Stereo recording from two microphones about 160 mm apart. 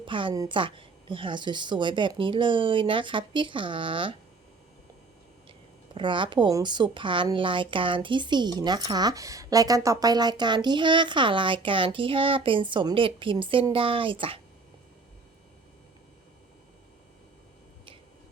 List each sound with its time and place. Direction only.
0.0 s a woman's voice: 30° right (ahead or behind)
5.5 s a woman's voice: 30° right (ahead or behind)